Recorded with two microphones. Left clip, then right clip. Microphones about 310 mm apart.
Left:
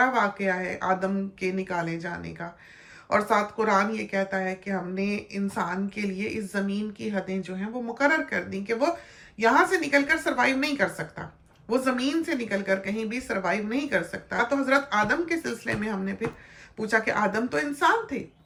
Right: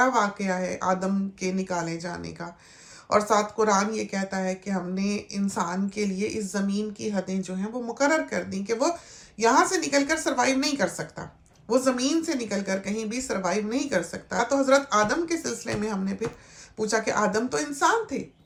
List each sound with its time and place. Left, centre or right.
0.0 s speech: centre